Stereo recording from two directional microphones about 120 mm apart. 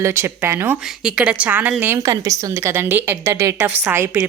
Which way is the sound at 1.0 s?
10° right (ahead or behind).